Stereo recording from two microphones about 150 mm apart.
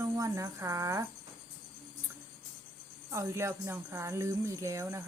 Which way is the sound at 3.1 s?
20° right (ahead or behind).